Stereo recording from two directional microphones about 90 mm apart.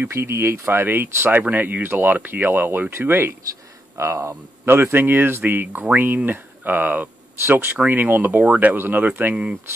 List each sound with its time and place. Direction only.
0.0 s speech: 30° right (ahead or behind); by 9.6 s 15° right (ahead or behind)